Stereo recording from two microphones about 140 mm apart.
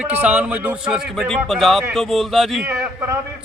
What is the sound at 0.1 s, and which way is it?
A man's voice, 10° right (ahead or behind).